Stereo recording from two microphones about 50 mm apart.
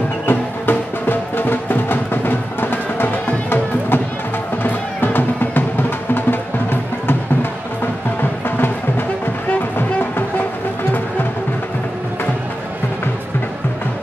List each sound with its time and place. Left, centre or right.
0.3 s music: left
8.2 s music: left
9.8 s music: left